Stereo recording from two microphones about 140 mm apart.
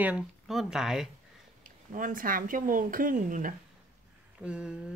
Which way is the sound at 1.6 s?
70° right (ahead or behind).